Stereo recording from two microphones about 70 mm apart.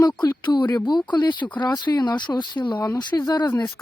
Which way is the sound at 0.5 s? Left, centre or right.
Left.